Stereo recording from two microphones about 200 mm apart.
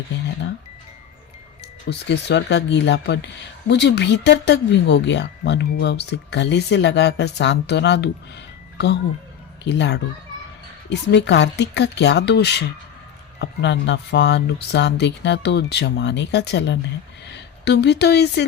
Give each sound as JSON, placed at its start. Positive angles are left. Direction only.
{"t": 1.9, "sound": "speech", "side_deg": 55}
{"t": 9.6, "sound": "a woman's voice", "side_deg": 60}